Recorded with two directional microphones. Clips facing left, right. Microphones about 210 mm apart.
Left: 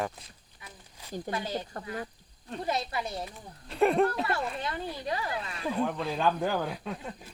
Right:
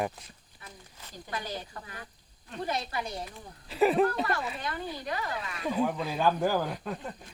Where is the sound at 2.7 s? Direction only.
25° left (ahead or behind).